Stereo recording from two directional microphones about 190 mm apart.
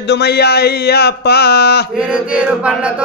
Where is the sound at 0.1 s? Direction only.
60° left (ahead or behind).